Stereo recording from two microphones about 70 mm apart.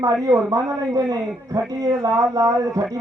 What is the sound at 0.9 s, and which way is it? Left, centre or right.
A man's voice, right.